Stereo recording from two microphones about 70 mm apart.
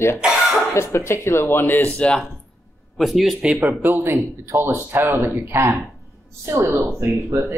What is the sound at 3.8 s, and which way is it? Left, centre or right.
Speech, right.